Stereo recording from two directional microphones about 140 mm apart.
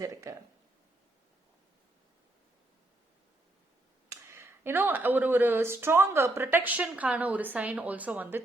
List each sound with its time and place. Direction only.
0.0 s speech: 20° right (ahead or behind)
4.1 s speech: 20° right (ahead or behind)